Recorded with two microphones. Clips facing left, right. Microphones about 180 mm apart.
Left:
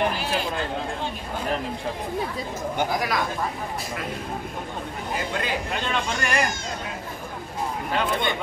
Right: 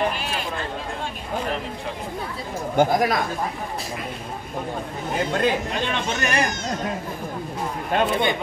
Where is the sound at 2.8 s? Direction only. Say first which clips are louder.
Right 7 dB; 50° right (ahead or behind).